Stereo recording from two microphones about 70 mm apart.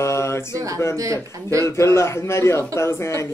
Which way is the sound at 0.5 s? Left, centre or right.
Right.